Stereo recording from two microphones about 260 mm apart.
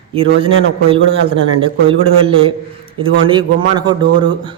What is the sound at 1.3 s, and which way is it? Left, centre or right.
A man's voice, right.